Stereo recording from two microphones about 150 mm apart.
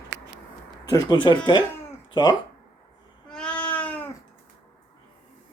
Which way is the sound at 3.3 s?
5° left (ahead or behind).